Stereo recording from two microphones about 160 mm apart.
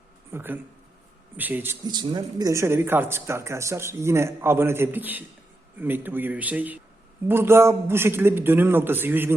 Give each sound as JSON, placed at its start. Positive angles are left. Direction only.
{"t": 0.3, "sound": "speech", "side_deg": -15}
{"t": 1.8, "sound": "speech", "side_deg": -25}